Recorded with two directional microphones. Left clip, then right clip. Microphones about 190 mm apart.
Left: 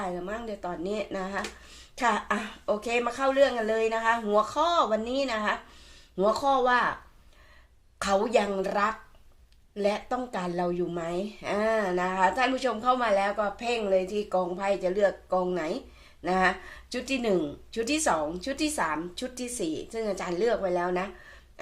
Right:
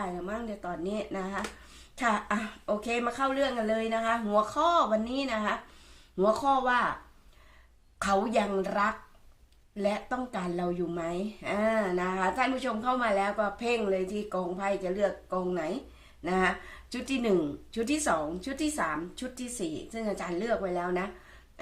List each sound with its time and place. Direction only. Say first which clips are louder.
0.3 s a woman's voice: left 2 dB; 35° left (ahead or behind)
7.9 s a woman's voice: left 3 dB; 35° left (ahead or behind)
19.9 s a woman's voice: left 3 dB; 40° left (ahead or behind)